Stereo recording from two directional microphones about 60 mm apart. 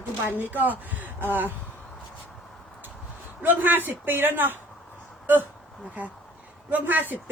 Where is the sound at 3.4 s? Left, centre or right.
Right.